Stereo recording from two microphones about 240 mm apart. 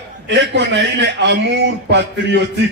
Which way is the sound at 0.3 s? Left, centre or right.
Right.